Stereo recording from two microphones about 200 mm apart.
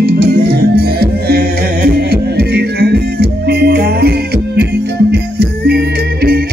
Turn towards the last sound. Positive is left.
turn(degrees=-55)  # may be behind; listen again after turning